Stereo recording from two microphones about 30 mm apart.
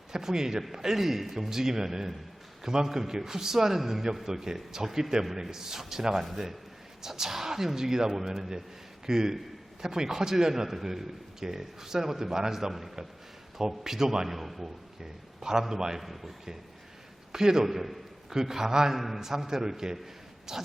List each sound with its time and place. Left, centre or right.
0.1 s a man's voice: centre
14.3 s a man's voice: centre
15.4 s a man's voice: right
16.0 s a man's voice: centre
17.3 s a man's voice: centre
17.7 s a man's voice: centre